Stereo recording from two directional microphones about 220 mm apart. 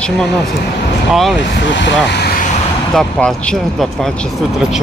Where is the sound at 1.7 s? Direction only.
55° left (ahead or behind).